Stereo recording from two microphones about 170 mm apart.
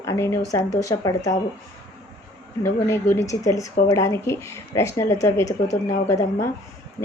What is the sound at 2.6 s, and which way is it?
Speech, 15° left (ahead or behind).